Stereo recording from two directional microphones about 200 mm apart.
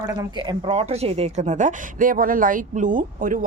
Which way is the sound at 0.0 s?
20° right (ahead or behind).